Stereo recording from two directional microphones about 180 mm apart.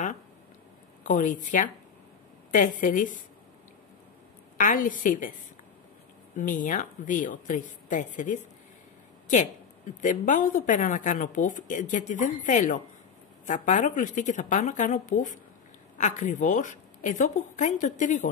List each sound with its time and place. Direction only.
1.0 s speech: 45° left (ahead or behind)
4.6 s speech: 50° left (ahead or behind)
6.3 s speech: 45° left (ahead or behind)
10.0 s speech: 45° left (ahead or behind)